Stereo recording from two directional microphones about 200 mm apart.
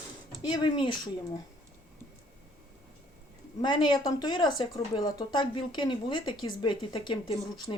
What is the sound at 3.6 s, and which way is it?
Speech, 20° left (ahead or behind).